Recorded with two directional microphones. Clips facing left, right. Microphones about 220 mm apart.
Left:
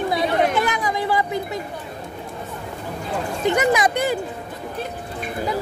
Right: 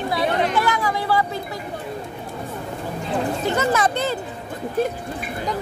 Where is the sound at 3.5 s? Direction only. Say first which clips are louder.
Left 4 dB; 15° left (ahead or behind).